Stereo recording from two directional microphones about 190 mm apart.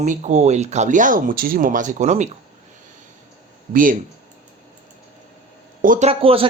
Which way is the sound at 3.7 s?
45° right (ahead or behind).